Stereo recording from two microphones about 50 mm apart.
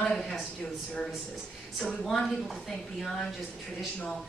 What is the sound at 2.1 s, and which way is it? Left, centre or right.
Speech, centre.